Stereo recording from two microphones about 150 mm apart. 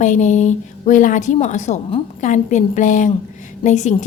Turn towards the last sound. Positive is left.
turn(degrees=50)  # may be behind; listen again after turning